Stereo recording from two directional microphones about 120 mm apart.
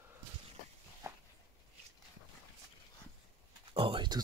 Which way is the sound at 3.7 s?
45° right (ahead or behind).